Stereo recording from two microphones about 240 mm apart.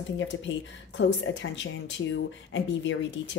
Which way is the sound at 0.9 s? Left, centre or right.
Left.